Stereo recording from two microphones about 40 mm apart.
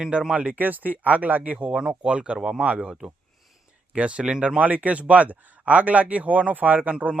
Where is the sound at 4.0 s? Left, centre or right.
Right.